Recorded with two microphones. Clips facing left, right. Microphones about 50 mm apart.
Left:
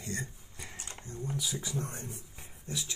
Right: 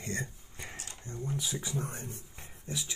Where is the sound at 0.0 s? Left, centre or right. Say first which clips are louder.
Right 2 dB; right.